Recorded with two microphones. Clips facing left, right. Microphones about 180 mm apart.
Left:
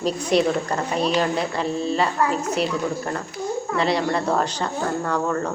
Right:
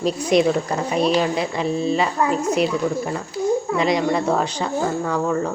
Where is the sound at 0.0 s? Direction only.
35° left (ahead or behind).